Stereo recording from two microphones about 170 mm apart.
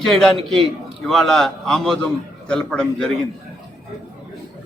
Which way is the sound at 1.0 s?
Centre (ahead or behind).